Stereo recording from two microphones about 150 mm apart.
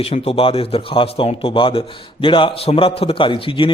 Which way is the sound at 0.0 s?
40° left (ahead or behind).